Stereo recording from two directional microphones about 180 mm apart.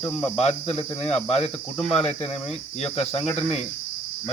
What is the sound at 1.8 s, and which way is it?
Cricket, centre (ahead or behind).